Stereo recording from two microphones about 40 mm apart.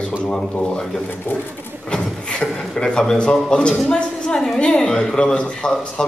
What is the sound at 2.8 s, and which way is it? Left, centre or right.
A woman's voice, centre.